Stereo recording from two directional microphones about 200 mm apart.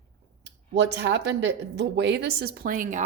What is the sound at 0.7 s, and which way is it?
Speech, 60° right (ahead or behind).